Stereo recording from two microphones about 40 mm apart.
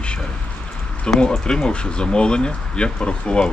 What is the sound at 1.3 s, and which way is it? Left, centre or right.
Speech, left.